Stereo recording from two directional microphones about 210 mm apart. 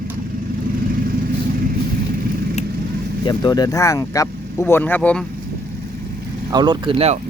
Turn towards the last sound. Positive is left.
turn(degrees=-25)  # may be behind; listen again after turning